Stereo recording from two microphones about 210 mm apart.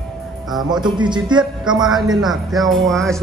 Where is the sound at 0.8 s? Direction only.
20° right (ahead or behind).